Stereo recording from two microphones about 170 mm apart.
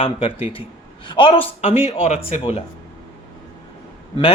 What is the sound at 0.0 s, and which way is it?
Speech, 35° left (ahead or behind).